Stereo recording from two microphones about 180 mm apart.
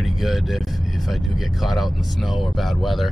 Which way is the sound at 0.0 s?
Centre (ahead or behind).